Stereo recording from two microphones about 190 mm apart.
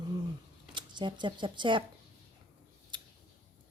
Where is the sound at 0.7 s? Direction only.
25° right (ahead or behind).